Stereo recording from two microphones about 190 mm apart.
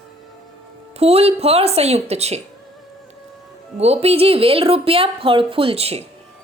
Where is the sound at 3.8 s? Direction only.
35° right (ahead or behind).